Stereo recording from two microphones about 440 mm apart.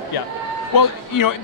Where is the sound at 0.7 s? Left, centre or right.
Left.